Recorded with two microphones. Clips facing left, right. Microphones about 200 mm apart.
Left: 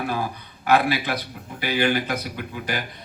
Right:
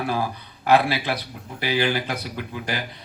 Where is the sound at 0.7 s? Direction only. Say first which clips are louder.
Right 1 dB; 50° left (ahead or behind).